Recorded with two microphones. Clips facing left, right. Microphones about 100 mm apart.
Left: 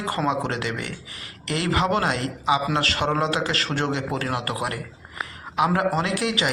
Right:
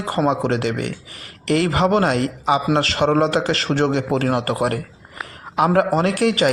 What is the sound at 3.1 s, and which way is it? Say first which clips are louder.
A man's voice: right 7 dB; 40° right (ahead or behind).